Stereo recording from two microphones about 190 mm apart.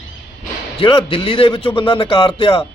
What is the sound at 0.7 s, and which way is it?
A man's voice, 25° left (ahead or behind).